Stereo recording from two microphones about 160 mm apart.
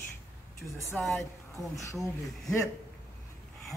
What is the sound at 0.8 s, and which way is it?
Speech, 15° left (ahead or behind).